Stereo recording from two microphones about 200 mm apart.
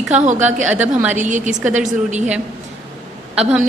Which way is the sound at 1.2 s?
35° right (ahead or behind).